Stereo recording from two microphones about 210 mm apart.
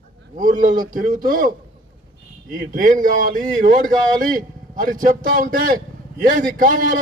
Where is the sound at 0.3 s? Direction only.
40° right (ahead or behind).